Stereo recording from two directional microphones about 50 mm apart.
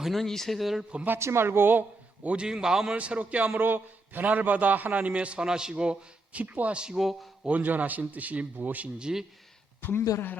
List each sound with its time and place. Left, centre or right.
0.0 s speech: centre
1.2 s speech: right
2.2 s a man's voice: right
2.9 s a man's voice: right
3.5 s a man's voice: right
6.9 s speech: centre
7.4 s a man's voice: right
9.0 s a man's voice: centre
9.8 s speech: left